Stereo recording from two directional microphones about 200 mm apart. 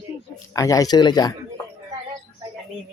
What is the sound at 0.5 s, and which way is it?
Speech, 15° left (ahead or behind).